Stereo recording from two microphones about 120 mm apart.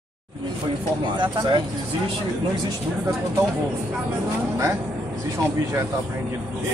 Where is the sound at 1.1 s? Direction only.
40° right (ahead or behind).